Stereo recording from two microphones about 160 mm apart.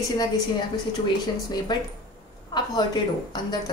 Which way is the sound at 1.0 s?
25° left (ahead or behind).